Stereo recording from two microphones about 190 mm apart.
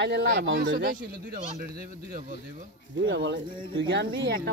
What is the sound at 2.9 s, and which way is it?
A child's voice, 65° right (ahead or behind).